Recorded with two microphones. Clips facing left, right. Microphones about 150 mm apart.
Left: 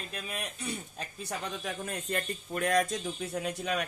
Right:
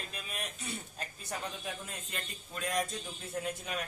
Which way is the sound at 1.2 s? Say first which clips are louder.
Left 4 dB; 70° left (ahead or behind).